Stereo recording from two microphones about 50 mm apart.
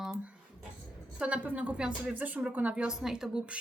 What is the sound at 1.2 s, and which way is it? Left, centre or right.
Speech, right.